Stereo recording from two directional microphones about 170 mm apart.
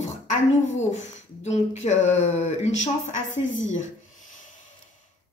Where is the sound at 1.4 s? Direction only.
40° left (ahead or behind).